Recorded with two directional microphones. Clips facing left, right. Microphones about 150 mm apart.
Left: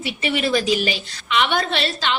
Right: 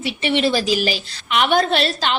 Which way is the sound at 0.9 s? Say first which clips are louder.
Right 2 dB; 45° right (ahead or behind).